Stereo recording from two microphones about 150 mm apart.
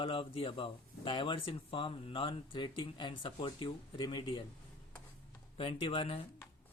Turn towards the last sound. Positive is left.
turn(degrees=35)  # may be behind; listen again after turning